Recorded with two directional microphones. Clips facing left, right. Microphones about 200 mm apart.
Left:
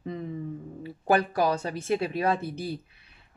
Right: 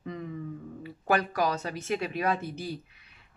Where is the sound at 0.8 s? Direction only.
30° left (ahead or behind).